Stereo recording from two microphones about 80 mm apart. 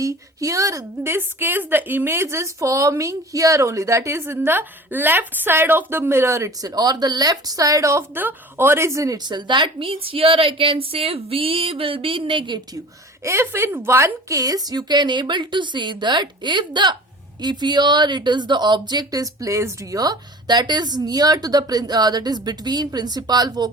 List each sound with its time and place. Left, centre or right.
0.0 s a woman's voice: right
8.1 s a woman's voice: right
9.1 s a woman's voice: right
11.9 s speech: right
13.2 s a woman's voice: right
14.3 s a woman's voice: right